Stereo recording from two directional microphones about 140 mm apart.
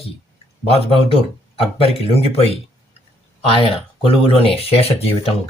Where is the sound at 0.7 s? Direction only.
40° left (ahead or behind).